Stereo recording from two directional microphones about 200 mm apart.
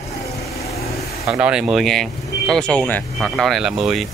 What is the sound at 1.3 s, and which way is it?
Speech, 5° right (ahead or behind).